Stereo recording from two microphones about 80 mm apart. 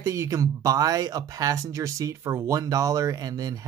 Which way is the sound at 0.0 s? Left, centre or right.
Right.